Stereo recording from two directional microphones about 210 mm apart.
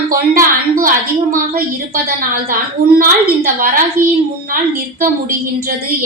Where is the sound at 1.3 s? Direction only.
45° right (ahead or behind).